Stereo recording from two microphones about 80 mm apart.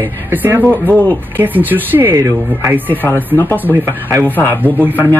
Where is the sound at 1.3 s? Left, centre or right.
Right.